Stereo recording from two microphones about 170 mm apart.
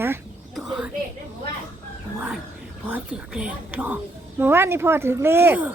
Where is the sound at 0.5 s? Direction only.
Centre (ahead or behind).